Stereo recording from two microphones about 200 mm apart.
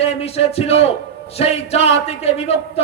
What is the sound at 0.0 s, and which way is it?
Speech, 30° left (ahead or behind).